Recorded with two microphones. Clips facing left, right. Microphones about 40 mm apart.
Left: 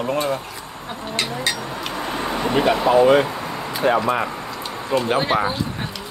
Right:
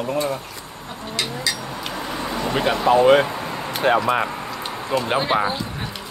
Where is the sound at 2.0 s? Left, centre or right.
Left.